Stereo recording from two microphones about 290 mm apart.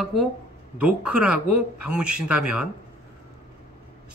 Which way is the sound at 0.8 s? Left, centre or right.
Centre.